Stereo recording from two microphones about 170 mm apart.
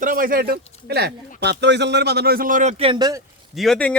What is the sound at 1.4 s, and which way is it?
A man's voice, 85° right.